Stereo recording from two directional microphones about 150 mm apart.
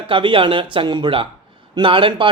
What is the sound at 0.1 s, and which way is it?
Speech, 35° right (ahead or behind).